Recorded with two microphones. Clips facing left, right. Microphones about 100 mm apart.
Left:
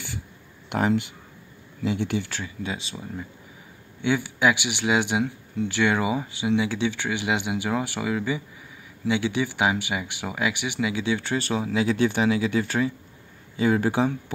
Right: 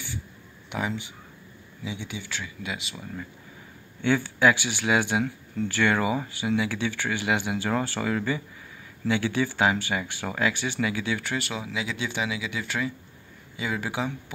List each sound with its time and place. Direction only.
0.7 s speech: 60° left (ahead or behind)
2.4 s speech: 30° left (ahead or behind)
4.0 s speech: 15° left (ahead or behind); by 14.1 s 40° left (ahead or behind)